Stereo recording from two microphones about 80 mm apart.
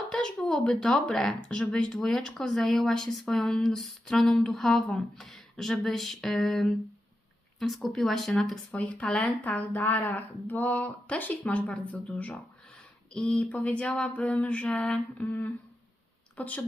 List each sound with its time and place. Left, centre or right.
0.1 s speech: centre
15.2 s speech: left